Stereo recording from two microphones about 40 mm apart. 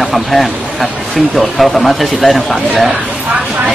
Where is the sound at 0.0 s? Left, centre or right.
Centre.